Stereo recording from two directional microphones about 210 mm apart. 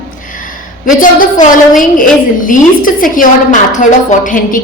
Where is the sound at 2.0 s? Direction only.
40° left (ahead or behind).